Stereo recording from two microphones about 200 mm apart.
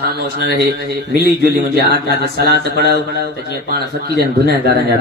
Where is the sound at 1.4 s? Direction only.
50° right (ahead or behind).